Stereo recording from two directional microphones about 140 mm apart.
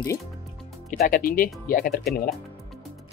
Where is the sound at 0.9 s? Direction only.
90° left.